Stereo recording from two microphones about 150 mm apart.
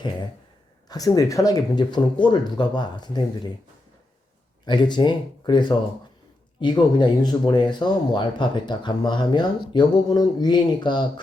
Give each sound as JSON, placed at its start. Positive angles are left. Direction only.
{"t": 0.9, "sound": "speech", "side_deg": 25}
{"t": 4.6, "sound": "speech", "side_deg": 30}